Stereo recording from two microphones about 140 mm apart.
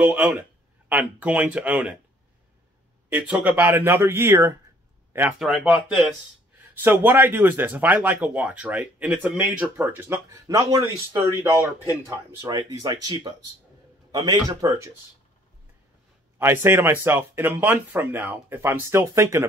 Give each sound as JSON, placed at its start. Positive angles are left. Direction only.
{"t": 0.0, "sound": "speech", "side_deg": -10}
{"t": 3.1, "sound": "speech", "side_deg": -10}
{"t": 5.4, "sound": "speech", "side_deg": 0}
{"t": 6.8, "sound": "speech", "side_deg": -15}
{"t": 12.4, "sound": "speech", "side_deg": -30}
{"t": 16.3, "sound": "speech", "side_deg": -15}